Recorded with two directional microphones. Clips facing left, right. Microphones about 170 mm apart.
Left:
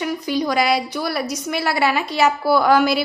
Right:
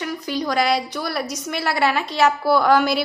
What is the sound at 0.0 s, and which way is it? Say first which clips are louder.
A woman's voice: left 3 dB; 10° left (ahead or behind).